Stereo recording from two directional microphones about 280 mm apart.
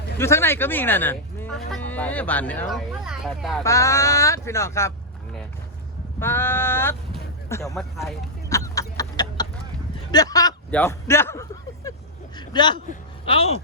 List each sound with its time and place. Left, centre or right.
0.2 s speech: centre
3.6 s speech: centre
6.1 s speech: centre
8.4 s a sound: centre
10.1 s speech: centre
12.4 s a sound: centre
12.9 s a man's voice: left